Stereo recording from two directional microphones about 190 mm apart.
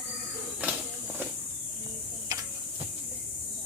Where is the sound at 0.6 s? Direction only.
5° right (ahead or behind).